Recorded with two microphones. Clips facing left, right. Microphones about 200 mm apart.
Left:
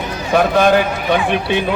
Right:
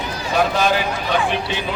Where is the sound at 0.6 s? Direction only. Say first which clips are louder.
Left 6 dB; 55° left (ahead or behind).